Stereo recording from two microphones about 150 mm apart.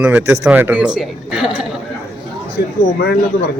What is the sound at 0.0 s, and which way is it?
Speech, 15° right (ahead or behind).